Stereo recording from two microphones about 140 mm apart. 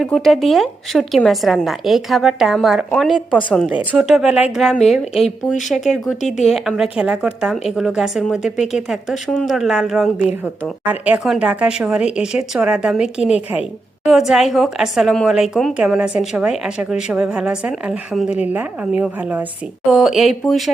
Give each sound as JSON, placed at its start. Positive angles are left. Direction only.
{"t": 0.0, "sound": "a woman's voice", "side_deg": 0}
{"t": 3.7, "sound": "a woman's voice", "side_deg": -5}
{"t": 6.2, "sound": "speech", "side_deg": 55}
{"t": 6.5, "sound": "a woman's voice", "side_deg": 0}